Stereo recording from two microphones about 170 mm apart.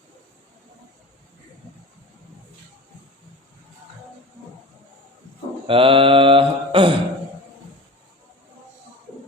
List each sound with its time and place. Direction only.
5.6 s mantra: 30° right (ahead or behind)